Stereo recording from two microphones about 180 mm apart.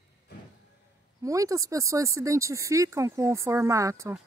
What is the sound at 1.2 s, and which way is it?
Speech, 20° right (ahead or behind).